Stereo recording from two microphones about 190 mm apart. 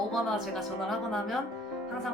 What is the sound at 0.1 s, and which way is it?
Speech, centre (ahead or behind).